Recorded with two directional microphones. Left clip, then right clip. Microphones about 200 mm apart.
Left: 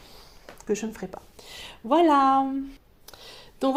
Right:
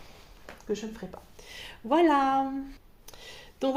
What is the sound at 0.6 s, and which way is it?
Speech, 50° left (ahead or behind).